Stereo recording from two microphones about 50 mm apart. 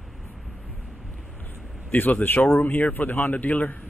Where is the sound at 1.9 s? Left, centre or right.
Left.